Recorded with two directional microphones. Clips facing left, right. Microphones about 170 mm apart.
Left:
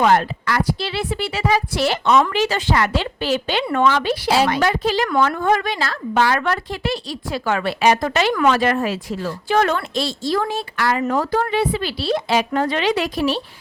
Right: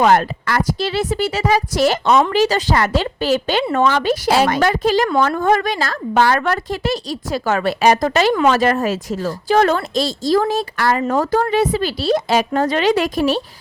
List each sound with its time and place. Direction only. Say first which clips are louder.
0.0 s a woman's voice: right 2 dB; 45° right (ahead or behind)